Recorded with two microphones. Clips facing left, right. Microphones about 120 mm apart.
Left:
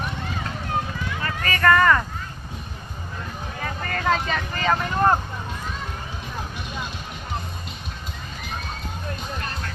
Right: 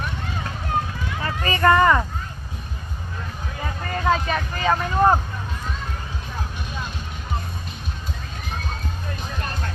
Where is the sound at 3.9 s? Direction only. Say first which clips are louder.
Right 2 dB; 10° right (ahead or behind).